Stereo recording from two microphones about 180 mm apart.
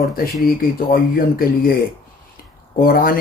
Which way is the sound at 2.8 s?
55° left (ahead or behind).